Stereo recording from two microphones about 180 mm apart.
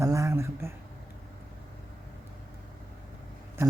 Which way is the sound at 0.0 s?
15° right (ahead or behind).